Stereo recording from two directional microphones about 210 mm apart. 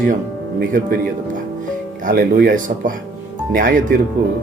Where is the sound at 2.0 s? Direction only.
40° right (ahead or behind).